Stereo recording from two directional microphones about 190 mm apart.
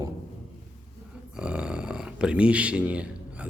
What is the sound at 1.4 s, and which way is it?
Speech, 5° right (ahead or behind).